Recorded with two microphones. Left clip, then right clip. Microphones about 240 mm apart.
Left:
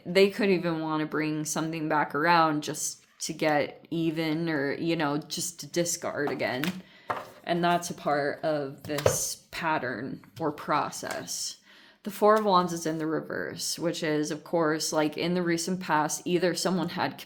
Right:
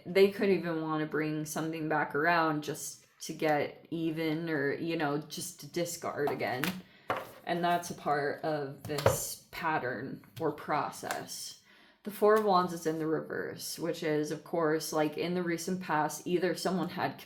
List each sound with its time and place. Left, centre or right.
0.1 s speech: left